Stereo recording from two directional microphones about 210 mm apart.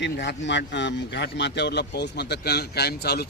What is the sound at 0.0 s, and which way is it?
Speech, 55° left (ahead or behind).